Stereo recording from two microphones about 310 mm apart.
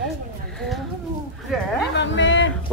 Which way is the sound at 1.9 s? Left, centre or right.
Left.